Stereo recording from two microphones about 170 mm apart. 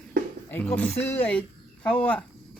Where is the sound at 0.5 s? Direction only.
5° left (ahead or behind).